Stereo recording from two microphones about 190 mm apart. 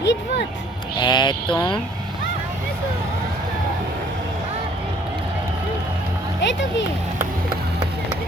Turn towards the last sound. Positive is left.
turn(degrees=70)  # may be behind; listen again after turning